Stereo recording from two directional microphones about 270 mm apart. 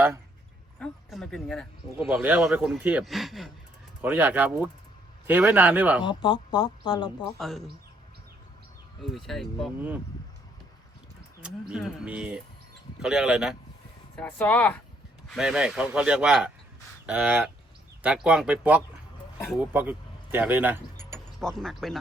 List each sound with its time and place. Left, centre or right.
0.8 s a man's voice: centre
6.0 s speech: centre
7.3 s a man's voice: centre
9.0 s a man's voice: centre
11.7 s a man's voice: centre